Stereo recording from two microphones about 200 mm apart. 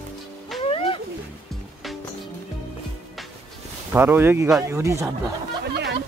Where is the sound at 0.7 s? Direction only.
25° left (ahead or behind).